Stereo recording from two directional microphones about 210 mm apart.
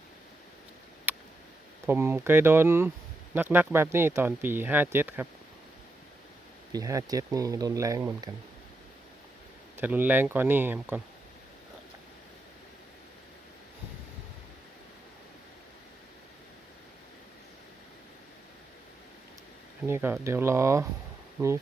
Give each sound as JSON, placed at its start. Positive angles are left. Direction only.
{"t": 1.1, "sound": "a sound", "side_deg": -10}
{"t": 1.9, "sound": "speech", "side_deg": -10}
{"t": 6.7, "sound": "speech", "side_deg": -15}
{"t": 9.7, "sound": "speech", "side_deg": -10}
{"t": 19.9, "sound": "speech", "side_deg": -10}